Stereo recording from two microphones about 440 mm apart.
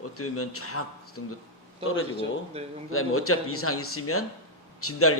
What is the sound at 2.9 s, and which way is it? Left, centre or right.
A man's voice, left.